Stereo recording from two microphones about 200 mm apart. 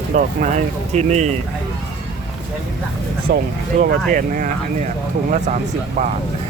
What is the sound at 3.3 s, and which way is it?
Speech, 55° right (ahead or behind).